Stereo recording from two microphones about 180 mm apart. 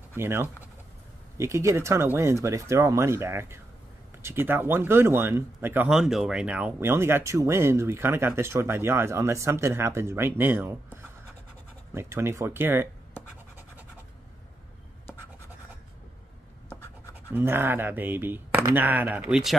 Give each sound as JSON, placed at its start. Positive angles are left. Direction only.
{"t": 0.1, "sound": "speech", "side_deg": -15}
{"t": 17.3, "sound": "speech", "side_deg": -10}